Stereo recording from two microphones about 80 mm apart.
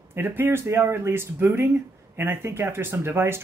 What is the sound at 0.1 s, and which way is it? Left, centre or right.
A woman's voice, right.